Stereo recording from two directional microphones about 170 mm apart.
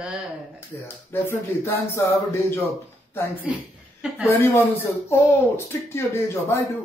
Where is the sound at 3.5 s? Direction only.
5° right (ahead or behind).